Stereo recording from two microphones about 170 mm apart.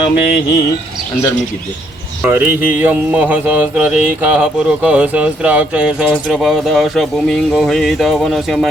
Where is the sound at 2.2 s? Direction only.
10° right (ahead or behind).